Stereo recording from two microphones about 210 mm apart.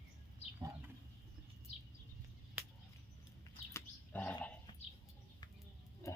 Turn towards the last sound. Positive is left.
turn(degrees=15)  # may be behind; listen again after turning